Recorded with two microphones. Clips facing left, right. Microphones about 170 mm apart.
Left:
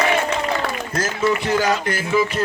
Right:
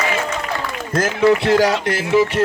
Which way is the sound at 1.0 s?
70° right (ahead or behind).